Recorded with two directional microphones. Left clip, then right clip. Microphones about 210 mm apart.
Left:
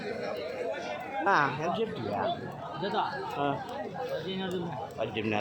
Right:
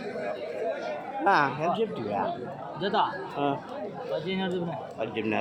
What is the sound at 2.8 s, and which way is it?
Speech, 50° right (ahead or behind).